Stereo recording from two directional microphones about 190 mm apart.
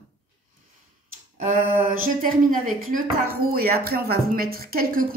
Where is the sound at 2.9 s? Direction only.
50° right (ahead or behind).